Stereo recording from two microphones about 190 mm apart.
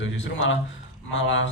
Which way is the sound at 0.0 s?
75° left (ahead or behind).